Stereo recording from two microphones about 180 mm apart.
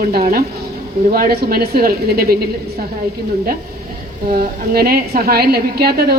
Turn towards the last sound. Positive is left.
turn(degrees=-60)  # may be behind; listen again after turning